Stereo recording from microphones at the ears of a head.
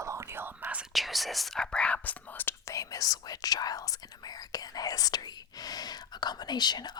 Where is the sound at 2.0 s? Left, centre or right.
Left.